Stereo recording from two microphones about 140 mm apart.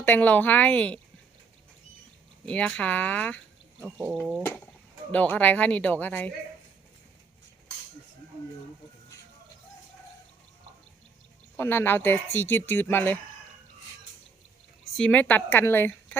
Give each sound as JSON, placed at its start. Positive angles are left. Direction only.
{"t": 0.0, "sound": "speech", "side_deg": 10}
{"t": 2.5, "sound": "speech", "side_deg": 10}
{"t": 3.8, "sound": "speech", "side_deg": -5}
{"t": 5.1, "sound": "speech", "side_deg": 10}
{"t": 11.5, "sound": "speech", "side_deg": 15}
{"t": 14.9, "sound": "speech", "side_deg": 10}